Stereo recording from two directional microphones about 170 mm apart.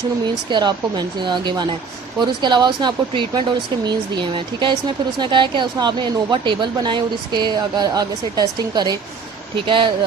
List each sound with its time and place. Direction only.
0.5 s speech: 25° right (ahead or behind)